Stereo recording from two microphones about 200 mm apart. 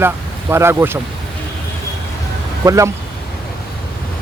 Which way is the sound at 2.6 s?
15° right (ahead or behind).